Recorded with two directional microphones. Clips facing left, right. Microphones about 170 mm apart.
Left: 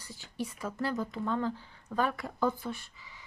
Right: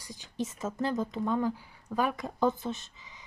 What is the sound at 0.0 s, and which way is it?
A woman's voice, 15° right (ahead or behind).